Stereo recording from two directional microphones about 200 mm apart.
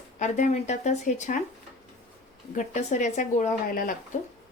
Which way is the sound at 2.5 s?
35° left (ahead or behind).